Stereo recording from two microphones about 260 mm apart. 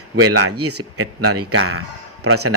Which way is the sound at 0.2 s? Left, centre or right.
Right.